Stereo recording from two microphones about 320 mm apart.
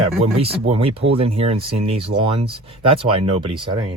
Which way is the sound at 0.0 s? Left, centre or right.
Centre.